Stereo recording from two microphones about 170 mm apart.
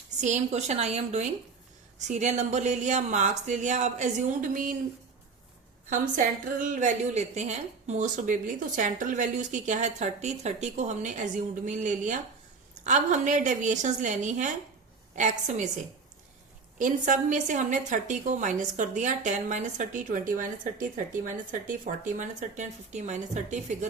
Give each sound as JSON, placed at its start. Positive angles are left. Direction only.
{"t": 0.2, "sound": "a woman's voice", "side_deg": -45}
{"t": 5.9, "sound": "a woman's voice", "side_deg": -50}
{"t": 16.7, "sound": "a woman's voice", "side_deg": -50}